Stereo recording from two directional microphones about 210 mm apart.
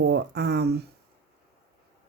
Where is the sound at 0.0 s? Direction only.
50° right (ahead or behind).